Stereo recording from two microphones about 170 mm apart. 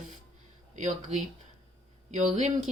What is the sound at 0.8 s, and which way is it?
Speech, 45° right (ahead or behind).